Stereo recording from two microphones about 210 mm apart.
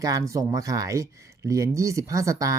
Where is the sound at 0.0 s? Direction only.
15° right (ahead or behind).